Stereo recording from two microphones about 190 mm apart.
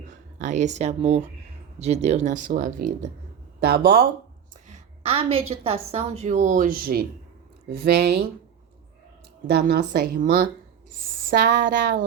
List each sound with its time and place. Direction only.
0.4 s a woman's voice: 40° right (ahead or behind); by 4.0 s 55° right (ahead or behind)
4.7 s a woman's voice: 30° right (ahead or behind); by 8.2 s 55° right (ahead or behind)
9.5 s speech: 55° right (ahead or behind)